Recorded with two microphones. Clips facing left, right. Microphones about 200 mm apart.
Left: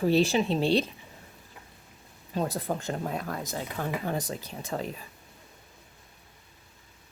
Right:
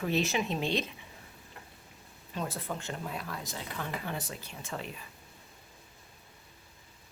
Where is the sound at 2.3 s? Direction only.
35° left (ahead or behind).